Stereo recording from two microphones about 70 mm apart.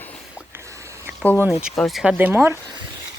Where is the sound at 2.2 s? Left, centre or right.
Right.